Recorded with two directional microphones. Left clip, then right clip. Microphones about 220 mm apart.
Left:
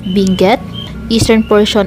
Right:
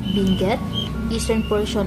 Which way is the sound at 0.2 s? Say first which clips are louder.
Left 12 dB; 40° left (ahead or behind).